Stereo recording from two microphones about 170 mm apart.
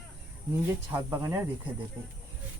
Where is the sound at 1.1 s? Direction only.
20° right (ahead or behind).